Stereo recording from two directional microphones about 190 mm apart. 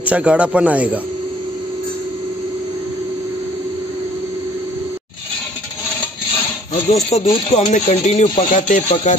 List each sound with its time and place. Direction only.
0.0 s speech: 5° right (ahead or behind)
7.1 s speech: 35° left (ahead or behind)